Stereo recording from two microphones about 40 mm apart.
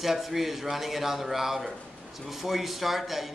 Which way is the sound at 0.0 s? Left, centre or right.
Centre.